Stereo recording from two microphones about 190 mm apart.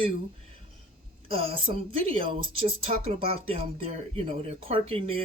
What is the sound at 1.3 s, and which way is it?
Speech, 30° right (ahead or behind).